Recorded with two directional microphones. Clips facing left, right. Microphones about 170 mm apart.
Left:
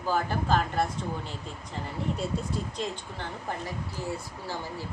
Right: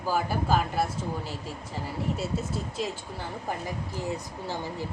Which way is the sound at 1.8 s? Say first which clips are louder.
Even; 5° right (ahead or behind).